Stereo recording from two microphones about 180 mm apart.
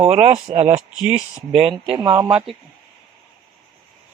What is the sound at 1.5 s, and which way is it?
Speech, 30° right (ahead or behind).